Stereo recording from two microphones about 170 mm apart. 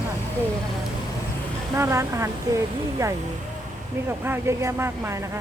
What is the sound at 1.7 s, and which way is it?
A woman's voice, 15° right (ahead or behind).